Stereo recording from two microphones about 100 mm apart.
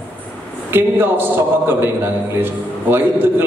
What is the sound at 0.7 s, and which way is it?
A man's voice, 20° right (ahead or behind).